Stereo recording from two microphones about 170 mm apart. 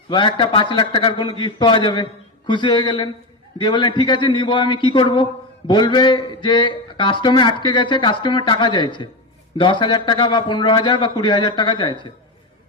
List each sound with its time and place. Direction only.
0.1 s a man's voice: 30° left (ahead or behind)